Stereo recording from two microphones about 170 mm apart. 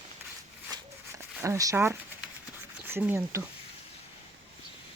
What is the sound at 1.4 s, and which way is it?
Speech, 20° right (ahead or behind).